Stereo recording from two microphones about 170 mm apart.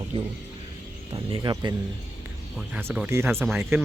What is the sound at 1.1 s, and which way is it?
Speech, 25° right (ahead or behind).